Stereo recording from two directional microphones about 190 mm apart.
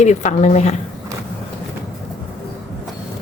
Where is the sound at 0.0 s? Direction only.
35° left (ahead or behind).